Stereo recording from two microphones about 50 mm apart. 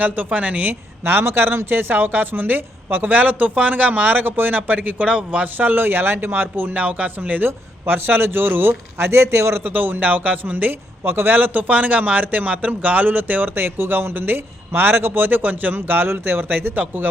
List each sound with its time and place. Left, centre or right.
0.3 s speech: right
0.7 s speech: right
6.7 s speech: right
9.0 s a man's voice: right
9.6 s speech: right
11.0 s speech: right